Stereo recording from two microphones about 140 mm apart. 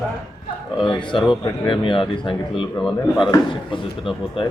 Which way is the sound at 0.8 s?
35° left (ahead or behind).